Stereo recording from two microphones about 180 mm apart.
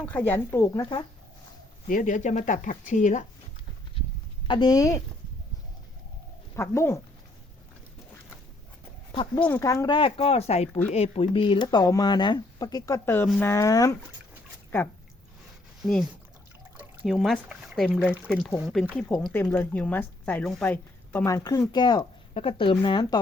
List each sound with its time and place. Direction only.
0.0 s speech: 10° left (ahead or behind)
1.9 s speech: 45° left (ahead or behind)
4.4 s speech: 25° left (ahead or behind)
6.6 s speech: 15° left (ahead or behind)
9.4 s speech: 15° left (ahead or behind)
15.8 s speech: centre (ahead or behind); by 23.1 s 25° left (ahead or behind)